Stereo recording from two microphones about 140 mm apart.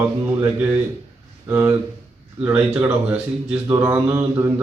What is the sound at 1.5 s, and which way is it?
Mantra, 20° right (ahead or behind).